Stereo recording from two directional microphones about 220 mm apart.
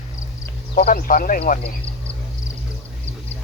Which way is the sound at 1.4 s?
30° left (ahead or behind).